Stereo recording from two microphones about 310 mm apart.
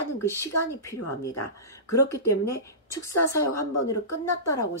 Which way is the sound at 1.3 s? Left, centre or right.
Left.